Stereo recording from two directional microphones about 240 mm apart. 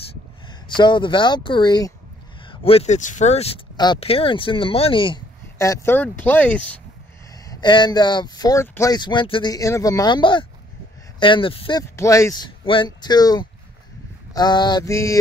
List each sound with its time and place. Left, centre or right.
0.7 s speech: centre
7.4 s speech: centre